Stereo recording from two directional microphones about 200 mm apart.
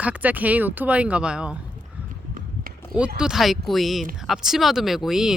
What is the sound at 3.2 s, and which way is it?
Speech, centre (ahead or behind).